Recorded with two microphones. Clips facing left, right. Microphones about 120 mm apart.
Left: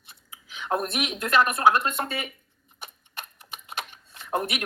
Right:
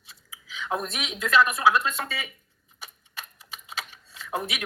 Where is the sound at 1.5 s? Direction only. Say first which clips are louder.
Left 1 dB; 55° left (ahead or behind).